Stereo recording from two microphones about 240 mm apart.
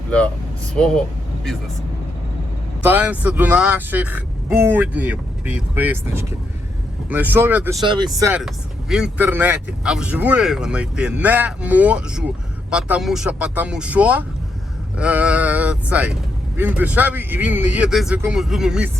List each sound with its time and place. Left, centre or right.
0.8 s speech: centre
2.8 s speech: centre
7.9 s speech: centre
8.4 s speech: centre